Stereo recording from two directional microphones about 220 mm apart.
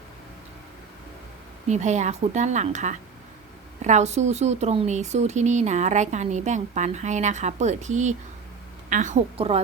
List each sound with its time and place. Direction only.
1.6 s speech: 30° right (ahead or behind)